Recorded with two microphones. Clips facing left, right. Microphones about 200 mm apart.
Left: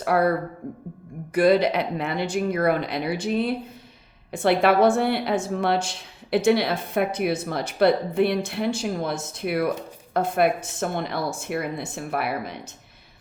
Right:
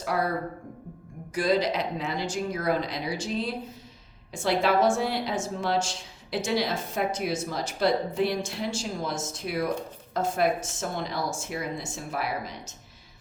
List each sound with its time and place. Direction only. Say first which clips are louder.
0.0 s a woman's voice: left 7 dB; 60° left (ahead or behind)